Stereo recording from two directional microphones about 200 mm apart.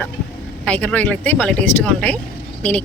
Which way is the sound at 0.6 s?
5° left (ahead or behind).